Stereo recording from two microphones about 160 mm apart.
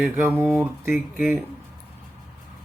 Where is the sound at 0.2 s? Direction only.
15° right (ahead or behind).